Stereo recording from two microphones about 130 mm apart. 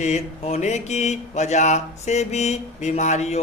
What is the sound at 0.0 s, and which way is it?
Speech, 55° left (ahead or behind).